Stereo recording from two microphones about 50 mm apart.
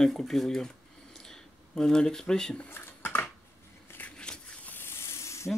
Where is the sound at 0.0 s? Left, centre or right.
Centre.